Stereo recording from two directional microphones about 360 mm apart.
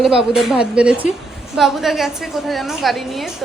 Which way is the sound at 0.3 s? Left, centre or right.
Centre.